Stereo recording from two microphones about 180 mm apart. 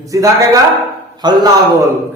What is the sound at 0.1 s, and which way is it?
A man's voice, 20° right (ahead or behind).